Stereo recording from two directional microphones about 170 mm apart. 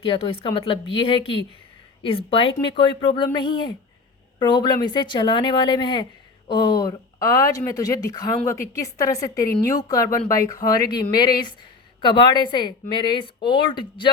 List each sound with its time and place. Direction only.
0.0 s a woman's voice: 35° left (ahead or behind)